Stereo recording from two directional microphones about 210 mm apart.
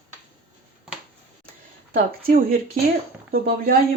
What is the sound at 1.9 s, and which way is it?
Speech, 45° right (ahead or behind).